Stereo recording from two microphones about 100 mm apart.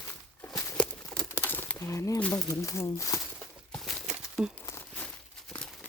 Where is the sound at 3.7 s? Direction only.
5° left (ahead or behind).